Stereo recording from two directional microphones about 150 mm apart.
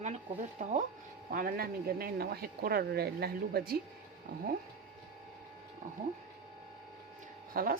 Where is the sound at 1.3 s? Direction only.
80° right.